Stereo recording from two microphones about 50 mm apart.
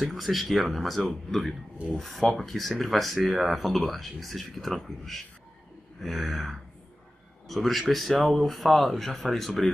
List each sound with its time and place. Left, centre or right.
0.0 s speech: centre